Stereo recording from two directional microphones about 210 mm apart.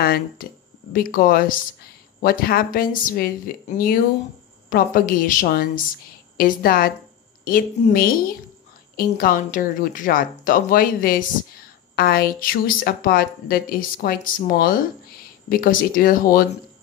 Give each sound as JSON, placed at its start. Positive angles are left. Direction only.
{"t": 0.0, "sound": "speech", "side_deg": 45}